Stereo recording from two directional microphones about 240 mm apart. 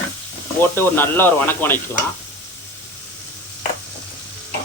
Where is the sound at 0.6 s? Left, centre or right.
Centre.